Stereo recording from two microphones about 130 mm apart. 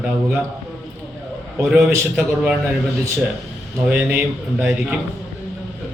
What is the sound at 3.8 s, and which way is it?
Speech, 15° right (ahead or behind).